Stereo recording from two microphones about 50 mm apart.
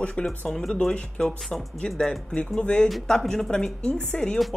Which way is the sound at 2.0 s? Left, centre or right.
Centre.